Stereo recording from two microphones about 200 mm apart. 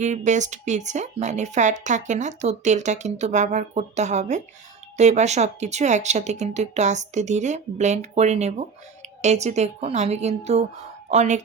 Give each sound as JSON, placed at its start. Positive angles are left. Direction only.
{"t": 0.0, "sound": "speech", "side_deg": -35}